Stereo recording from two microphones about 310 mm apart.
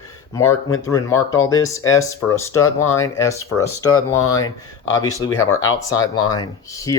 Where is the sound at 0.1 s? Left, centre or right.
Centre.